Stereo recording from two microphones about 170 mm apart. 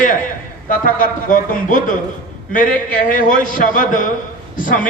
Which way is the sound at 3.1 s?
50° left (ahead or behind).